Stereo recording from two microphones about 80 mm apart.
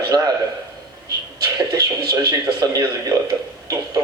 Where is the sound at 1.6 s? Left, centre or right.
Right.